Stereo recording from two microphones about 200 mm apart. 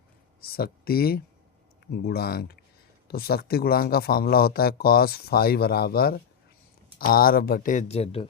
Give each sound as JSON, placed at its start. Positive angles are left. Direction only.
{"t": 0.4, "sound": "speech", "side_deg": 50}